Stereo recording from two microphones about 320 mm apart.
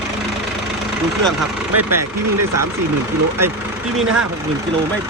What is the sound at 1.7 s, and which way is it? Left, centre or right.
Speech, right.